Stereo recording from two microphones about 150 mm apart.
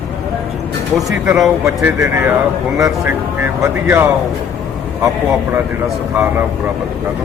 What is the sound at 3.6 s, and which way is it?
Speech, 15° right (ahead or behind).